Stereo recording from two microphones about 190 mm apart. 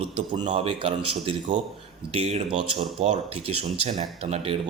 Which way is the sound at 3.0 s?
30° right (ahead or behind).